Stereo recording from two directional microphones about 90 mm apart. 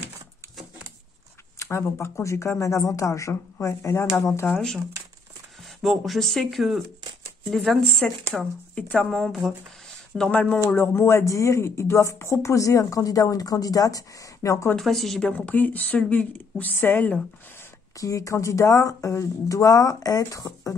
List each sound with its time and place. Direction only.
1.6 s speech: 30° left (ahead or behind)
4.5 s speech: 10° left (ahead or behind)
10.7 s speech: 25° left (ahead or behind)
14.8 s speech: centre (ahead or behind)
15.3 s speech: 20° left (ahead or behind)
17.9 s speech: 35° left (ahead or behind)